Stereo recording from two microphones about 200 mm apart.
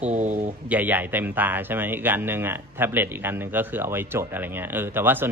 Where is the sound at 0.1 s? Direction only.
35° right (ahead or behind).